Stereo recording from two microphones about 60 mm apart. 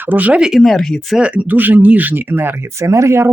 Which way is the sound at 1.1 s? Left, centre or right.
Right.